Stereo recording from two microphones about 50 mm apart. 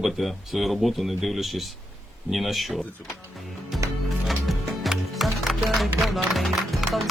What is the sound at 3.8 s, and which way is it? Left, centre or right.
Music, right.